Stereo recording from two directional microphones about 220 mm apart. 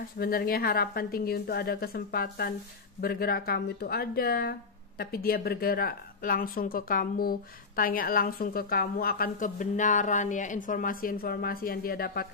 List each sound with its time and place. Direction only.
0.2 s a woman's voice: 40° left (ahead or behind)